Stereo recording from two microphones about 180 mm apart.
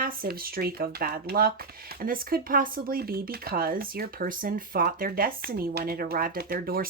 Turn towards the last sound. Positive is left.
turn(degrees=-55)  # may be behind; listen again after turning